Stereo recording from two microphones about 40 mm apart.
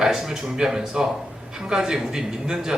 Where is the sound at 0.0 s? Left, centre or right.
Centre.